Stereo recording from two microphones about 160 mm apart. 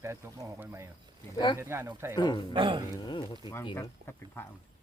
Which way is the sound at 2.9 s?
30° left (ahead or behind).